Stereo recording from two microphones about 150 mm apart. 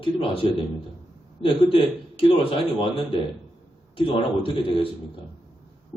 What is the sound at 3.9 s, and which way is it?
Speech, 35° left (ahead or behind).